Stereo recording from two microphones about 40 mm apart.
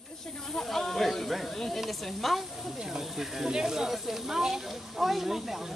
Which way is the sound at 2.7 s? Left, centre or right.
Centre.